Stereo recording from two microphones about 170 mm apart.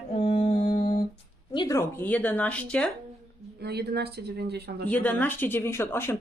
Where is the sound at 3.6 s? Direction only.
70° right (ahead or behind).